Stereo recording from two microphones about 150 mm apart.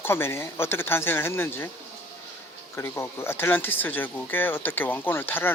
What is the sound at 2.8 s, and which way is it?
Speech, 15° left (ahead or behind).